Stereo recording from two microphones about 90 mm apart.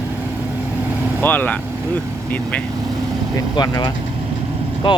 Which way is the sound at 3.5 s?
50° left (ahead or behind).